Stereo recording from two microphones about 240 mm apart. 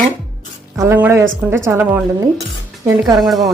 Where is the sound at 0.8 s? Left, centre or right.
Centre.